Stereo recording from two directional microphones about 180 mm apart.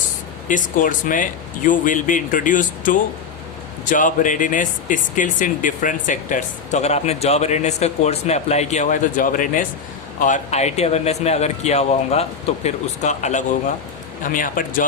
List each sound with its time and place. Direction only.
0.4 s a man's voice: 45° left (ahead or behind)